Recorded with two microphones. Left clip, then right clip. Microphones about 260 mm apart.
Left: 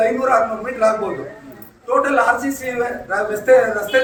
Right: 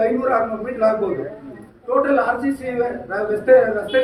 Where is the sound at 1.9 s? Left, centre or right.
Left.